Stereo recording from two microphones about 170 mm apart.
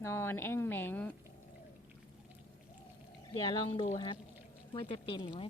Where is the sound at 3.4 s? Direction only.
30° left (ahead or behind).